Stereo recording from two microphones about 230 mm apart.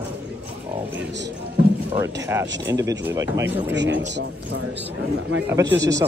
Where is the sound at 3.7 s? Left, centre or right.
Right.